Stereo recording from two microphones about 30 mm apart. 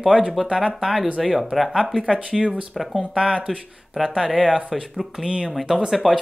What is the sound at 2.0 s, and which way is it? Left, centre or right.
Speech, centre.